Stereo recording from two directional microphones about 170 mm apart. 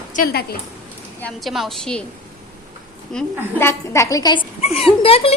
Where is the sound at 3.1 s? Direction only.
5° left (ahead or behind).